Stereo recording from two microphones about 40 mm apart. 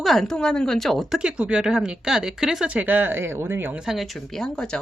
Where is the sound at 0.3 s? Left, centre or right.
Centre.